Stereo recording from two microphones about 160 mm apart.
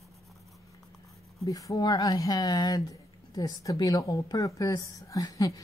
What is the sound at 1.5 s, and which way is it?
Speech, 25° left (ahead or behind).